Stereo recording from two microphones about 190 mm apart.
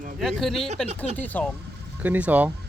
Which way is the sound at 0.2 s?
Centre (ahead or behind).